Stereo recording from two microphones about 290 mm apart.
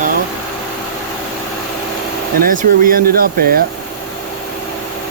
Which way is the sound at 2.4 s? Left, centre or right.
Right.